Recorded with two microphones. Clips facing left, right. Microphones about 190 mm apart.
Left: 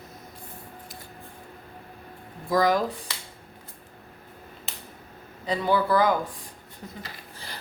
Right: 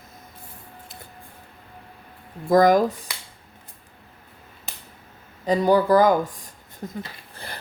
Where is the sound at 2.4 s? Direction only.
50° right (ahead or behind).